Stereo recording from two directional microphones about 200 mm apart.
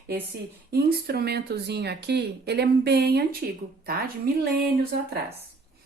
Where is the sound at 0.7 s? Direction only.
50° right (ahead or behind).